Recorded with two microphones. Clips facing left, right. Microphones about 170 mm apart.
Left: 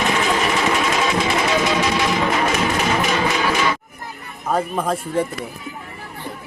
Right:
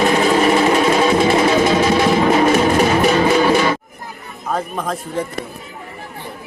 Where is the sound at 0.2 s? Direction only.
35° right (ahead or behind).